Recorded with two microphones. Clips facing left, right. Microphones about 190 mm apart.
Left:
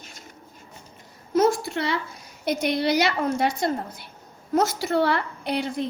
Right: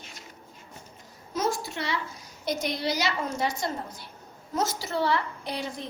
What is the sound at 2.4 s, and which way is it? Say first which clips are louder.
A woman's voice: left 6 dB; 60° left (ahead or behind).